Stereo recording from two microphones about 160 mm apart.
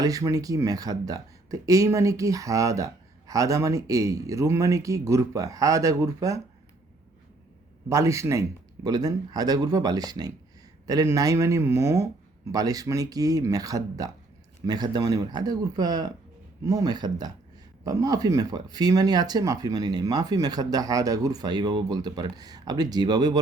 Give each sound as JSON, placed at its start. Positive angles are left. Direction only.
{"t": 0.0, "sound": "speech", "side_deg": -20}
{"t": 7.9, "sound": "speech", "side_deg": -20}